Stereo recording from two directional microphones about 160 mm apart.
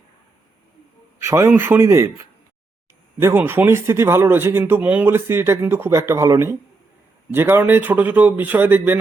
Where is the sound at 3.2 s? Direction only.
15° right (ahead or behind).